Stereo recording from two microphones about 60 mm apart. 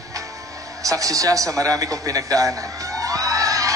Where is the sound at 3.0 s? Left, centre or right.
Right.